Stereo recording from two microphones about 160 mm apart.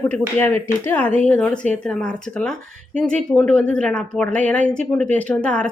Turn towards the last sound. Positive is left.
turn(degrees=10)  # may be behind; listen again after turning